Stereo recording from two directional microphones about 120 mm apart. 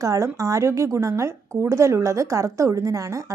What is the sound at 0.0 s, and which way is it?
A woman's voice, 25° right (ahead or behind).